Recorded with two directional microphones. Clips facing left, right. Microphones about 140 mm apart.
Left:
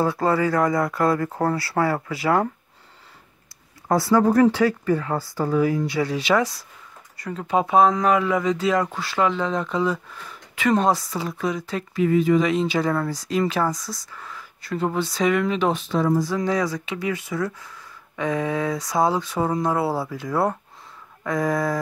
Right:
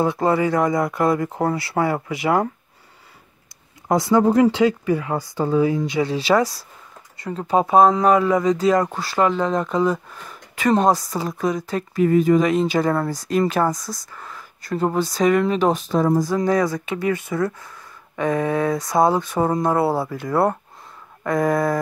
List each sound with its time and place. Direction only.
0.0 s speech: 20° right (ahead or behind)
3.9 s speech: 20° right (ahead or behind); by 21.7 s 55° right (ahead or behind)